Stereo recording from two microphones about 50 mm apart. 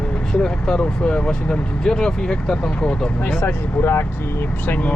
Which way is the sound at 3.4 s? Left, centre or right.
Left.